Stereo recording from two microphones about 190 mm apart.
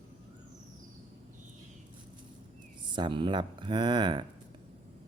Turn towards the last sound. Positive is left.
turn(degrees=-25)  # may be behind; listen again after turning